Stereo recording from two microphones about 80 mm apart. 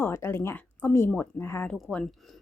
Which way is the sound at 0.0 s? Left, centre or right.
Left.